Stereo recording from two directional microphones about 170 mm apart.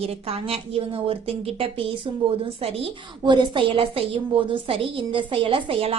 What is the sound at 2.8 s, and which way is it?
A woman's voice, 25° right (ahead or behind).